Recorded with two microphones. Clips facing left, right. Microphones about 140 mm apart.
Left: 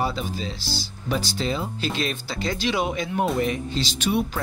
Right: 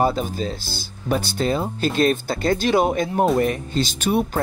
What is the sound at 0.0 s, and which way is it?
Speech, 45° right (ahead or behind).